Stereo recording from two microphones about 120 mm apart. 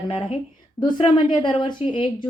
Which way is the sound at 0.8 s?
40° left (ahead or behind).